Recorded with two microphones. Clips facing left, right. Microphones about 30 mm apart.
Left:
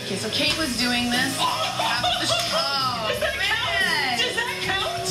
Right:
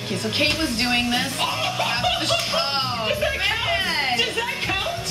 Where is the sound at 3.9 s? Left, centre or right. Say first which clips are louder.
Right 1 dB; right.